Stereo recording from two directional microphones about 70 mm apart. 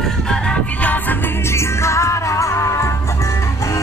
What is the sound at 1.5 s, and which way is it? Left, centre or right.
Music, left.